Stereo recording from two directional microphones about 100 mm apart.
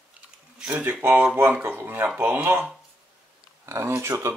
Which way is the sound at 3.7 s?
25° right (ahead or behind).